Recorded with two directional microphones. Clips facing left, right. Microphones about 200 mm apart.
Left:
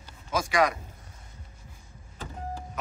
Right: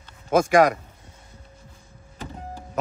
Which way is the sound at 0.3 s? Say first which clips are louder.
Right 8 dB; 50° right (ahead or behind).